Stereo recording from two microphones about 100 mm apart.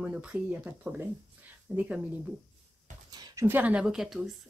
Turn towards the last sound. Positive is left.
turn(degrees=-5)  # may be behind; listen again after turning